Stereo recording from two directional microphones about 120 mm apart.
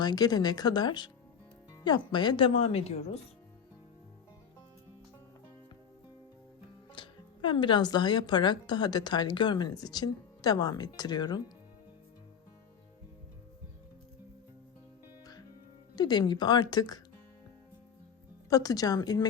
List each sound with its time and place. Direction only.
0.0 s speech: 35° left (ahead or behind)
2.6 s a woman's voice: 60° left (ahead or behind)
6.9 s speech: 40° left (ahead or behind)
16.0 s speech: 35° left (ahead or behind)
18.4 s speech: 30° left (ahead or behind)